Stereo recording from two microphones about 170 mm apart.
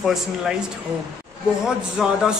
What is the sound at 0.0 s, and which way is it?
Speech, 5° right (ahead or behind).